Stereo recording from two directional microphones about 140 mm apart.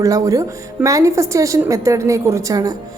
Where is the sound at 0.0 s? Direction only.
25° right (ahead or behind).